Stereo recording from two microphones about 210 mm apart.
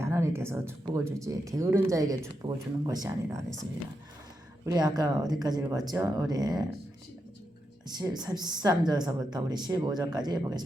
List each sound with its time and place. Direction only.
0.0 s a woman's voice: 10° right (ahead or behind)
4.6 s speech: 20° right (ahead or behind)
7.9 s a woman's voice: 20° right (ahead or behind)